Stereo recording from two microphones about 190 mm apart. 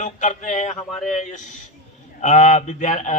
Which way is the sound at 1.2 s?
40° left (ahead or behind).